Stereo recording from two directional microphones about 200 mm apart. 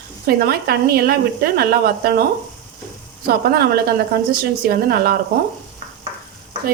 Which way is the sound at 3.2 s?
50° right (ahead or behind).